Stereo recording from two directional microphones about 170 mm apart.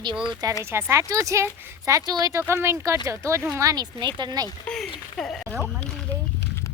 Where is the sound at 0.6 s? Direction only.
15° right (ahead or behind).